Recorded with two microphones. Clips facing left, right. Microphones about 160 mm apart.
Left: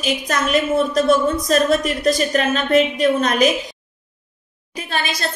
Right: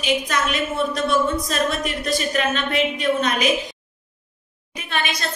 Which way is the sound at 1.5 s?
40° left (ahead or behind).